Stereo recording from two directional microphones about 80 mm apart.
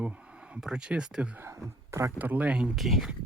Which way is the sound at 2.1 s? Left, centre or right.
Right.